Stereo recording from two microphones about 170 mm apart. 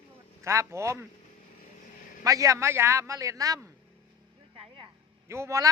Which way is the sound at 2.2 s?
20° right (ahead or behind).